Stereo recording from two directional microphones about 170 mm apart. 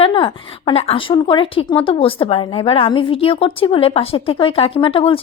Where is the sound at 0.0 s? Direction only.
30° left (ahead or behind).